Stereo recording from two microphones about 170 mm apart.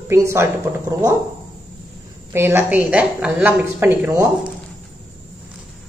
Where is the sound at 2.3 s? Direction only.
15° right (ahead or behind).